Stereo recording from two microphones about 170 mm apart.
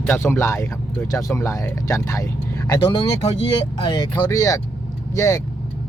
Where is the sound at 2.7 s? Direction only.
30° left (ahead or behind).